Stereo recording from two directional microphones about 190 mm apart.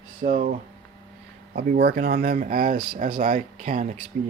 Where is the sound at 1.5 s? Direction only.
55° right (ahead or behind).